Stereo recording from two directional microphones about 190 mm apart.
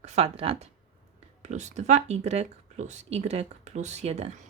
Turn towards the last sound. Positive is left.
turn(degrees=-35)  # may be behind; listen again after turning